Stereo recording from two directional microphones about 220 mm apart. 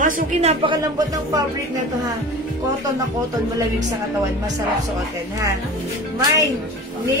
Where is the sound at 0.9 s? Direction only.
15° right (ahead or behind).